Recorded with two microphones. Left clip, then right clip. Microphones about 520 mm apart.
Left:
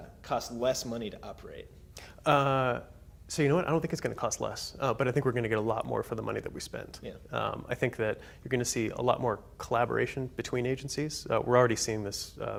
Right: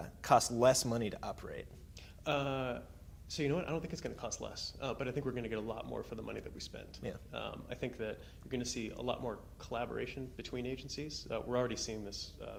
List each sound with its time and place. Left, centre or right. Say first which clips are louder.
0.3 s speech: right 2 dB; right
2.0 s speech: left 10 dB; left